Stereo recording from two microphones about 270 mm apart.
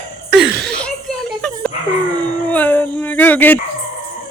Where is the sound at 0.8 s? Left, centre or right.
Centre.